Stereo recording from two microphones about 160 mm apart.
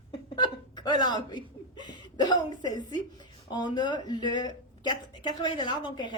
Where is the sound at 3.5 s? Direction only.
25° left (ahead or behind).